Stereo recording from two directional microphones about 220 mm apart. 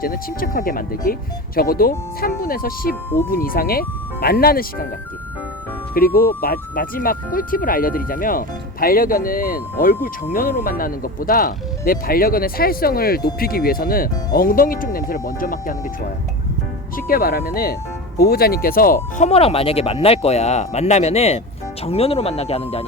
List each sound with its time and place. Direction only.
0.0 s speech: 40° left (ahead or behind)
5.9 s speech: 40° left (ahead or behind)
17.1 s speech: 40° left (ahead or behind)
19.2 s speech: 25° left (ahead or behind)